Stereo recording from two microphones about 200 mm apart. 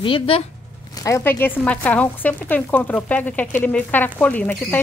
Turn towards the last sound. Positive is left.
turn(degrees=10)  # may be behind; listen again after turning